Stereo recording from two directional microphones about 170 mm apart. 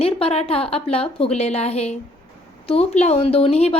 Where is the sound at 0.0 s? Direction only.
35° left (ahead or behind).